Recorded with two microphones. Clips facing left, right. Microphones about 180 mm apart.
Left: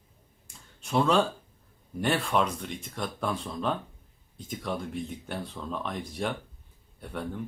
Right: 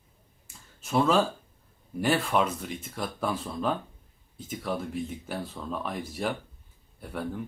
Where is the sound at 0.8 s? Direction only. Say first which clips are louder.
Right 1 dB; centre (ahead or behind).